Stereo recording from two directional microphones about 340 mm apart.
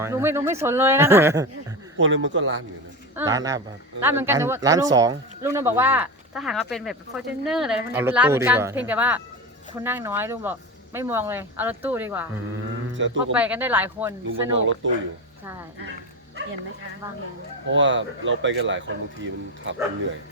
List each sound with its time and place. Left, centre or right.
0.0 s speech: centre
2.0 s speech: right
3.2 s speech: centre
13.0 s speech: right
13.3 s speech: centre
14.6 s speech: right
17.7 s speech: right